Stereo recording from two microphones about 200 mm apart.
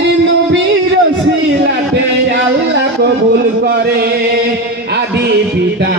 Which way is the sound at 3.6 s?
50° right (ahead or behind).